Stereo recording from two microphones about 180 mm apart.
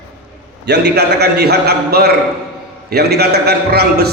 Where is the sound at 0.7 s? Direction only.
65° right (ahead or behind).